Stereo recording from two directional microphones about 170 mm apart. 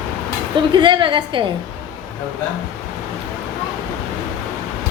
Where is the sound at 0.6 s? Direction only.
25° right (ahead or behind).